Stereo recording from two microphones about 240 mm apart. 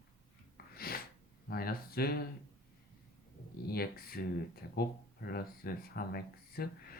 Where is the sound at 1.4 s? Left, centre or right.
Left.